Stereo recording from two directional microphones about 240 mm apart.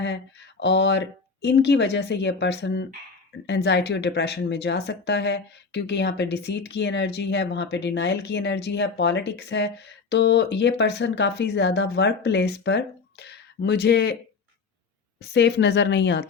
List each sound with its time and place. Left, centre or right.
0.0 s speech: left
15.2 s speech: left